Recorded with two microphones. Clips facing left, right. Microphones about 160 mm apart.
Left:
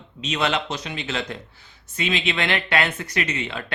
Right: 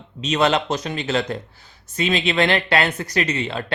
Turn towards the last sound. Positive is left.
turn(degrees=-35)  # may be behind; listen again after turning